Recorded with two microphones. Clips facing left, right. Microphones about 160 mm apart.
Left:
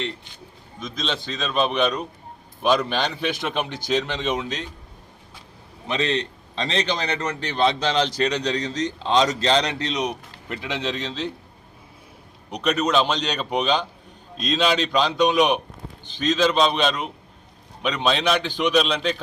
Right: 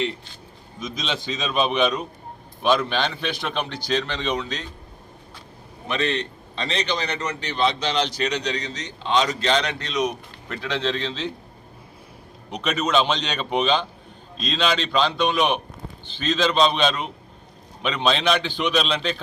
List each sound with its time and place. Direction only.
0.8 s a man's voice: 5° right (ahead or behind)
5.9 s a man's voice: 25° left (ahead or behind)
6.6 s a man's voice: 40° left (ahead or behind)
10.1 s speech: 15° left (ahead or behind)
12.5 s a man's voice: centre (ahead or behind)